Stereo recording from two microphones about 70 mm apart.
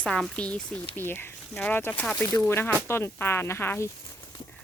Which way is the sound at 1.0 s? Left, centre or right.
Left.